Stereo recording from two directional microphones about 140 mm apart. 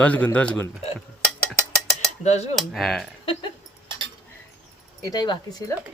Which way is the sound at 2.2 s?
50° left (ahead or behind).